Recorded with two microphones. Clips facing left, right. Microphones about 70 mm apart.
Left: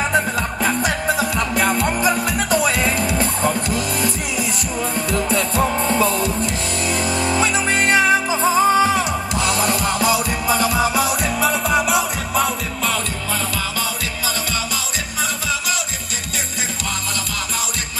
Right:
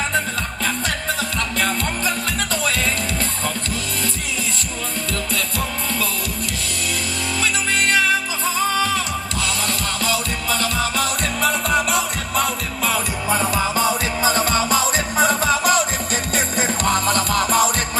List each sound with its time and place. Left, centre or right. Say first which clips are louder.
0.7 s music: left 4 dB; centre
5.1 s music: left 7 dB; left
7.3 s music: left 1 dB; left; by 13.0 s centre
13.3 s music: right 6 dB; right
16.8 s music: right 10 dB; right